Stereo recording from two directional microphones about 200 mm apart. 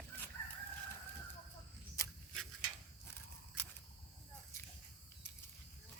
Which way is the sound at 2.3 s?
Centre (ahead or behind).